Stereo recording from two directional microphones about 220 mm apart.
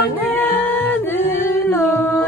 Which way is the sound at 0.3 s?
10° left (ahead or behind).